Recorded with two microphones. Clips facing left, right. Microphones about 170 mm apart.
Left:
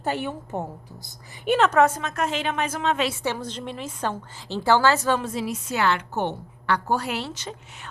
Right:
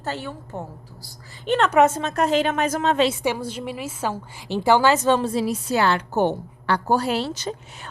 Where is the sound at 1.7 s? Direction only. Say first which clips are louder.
Right 2 dB; 20° right (ahead or behind); by 3.0 s 40° right (ahead or behind).